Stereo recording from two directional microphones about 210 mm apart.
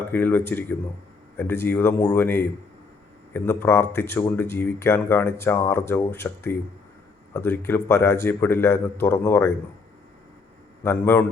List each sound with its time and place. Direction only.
0.1 s speech: 10° left (ahead or behind)
10.8 s speech: 10° left (ahead or behind)